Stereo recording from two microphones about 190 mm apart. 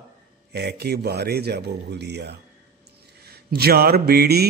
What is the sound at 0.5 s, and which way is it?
A man's voice, 60° right (ahead or behind).